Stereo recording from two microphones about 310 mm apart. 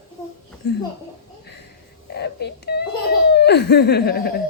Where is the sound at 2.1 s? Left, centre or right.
Left.